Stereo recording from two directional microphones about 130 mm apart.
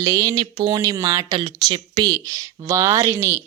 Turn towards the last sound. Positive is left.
turn(degrees=-20)  # may be behind; listen again after turning